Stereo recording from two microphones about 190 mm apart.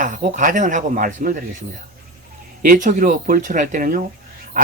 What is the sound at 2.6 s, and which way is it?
Speech, 45° right (ahead or behind).